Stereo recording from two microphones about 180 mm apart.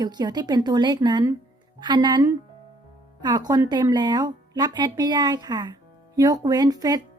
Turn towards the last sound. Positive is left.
turn(degrees=-20)  # may be behind; listen again after turning